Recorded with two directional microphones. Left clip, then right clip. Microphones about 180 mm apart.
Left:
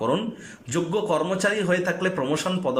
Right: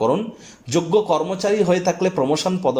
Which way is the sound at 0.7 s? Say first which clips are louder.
Right 6 dB; 20° right (ahead or behind).